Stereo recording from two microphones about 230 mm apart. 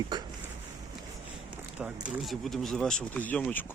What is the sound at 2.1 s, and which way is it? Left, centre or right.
Speech, centre.